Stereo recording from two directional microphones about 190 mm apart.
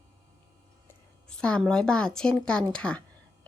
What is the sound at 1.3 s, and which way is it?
A woman's voice, 5° left (ahead or behind).